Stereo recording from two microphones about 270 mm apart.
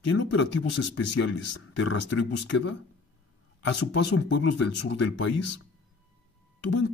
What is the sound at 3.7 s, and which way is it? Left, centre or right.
Speech, left.